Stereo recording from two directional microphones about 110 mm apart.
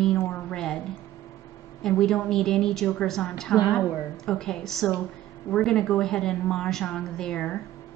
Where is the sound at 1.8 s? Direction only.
5° left (ahead or behind).